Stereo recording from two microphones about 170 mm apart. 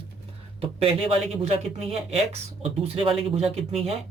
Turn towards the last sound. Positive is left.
turn(degrees=-35)  # may be behind; listen again after turning